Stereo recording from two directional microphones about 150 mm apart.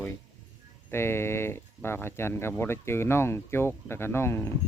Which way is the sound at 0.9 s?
15° left (ahead or behind).